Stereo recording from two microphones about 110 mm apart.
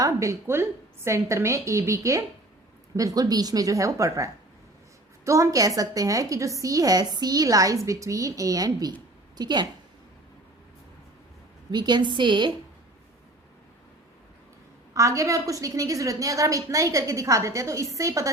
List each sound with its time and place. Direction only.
0.0 s a woman's voice: 25° right (ahead or behind)
11.7 s a woman's voice: 40° right (ahead or behind)
14.9 s a woman's voice: 30° right (ahead or behind)